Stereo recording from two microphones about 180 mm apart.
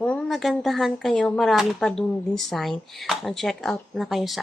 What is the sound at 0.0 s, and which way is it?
Speech, 5° left (ahead or behind).